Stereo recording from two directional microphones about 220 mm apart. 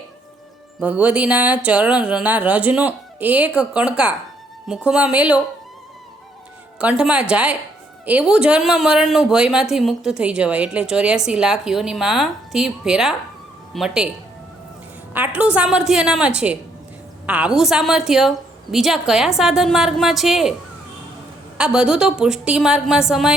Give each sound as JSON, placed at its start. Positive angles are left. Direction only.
{"t": 0.8, "sound": "speech", "side_deg": -5}
{"t": 6.7, "sound": "speech", "side_deg": -5}
{"t": 15.1, "sound": "speech", "side_deg": -5}
{"t": 21.6, "sound": "speech", "side_deg": -5}